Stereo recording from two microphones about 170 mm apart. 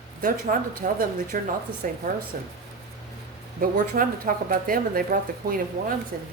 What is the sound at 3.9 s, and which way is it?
Speech, 55° right (ahead or behind).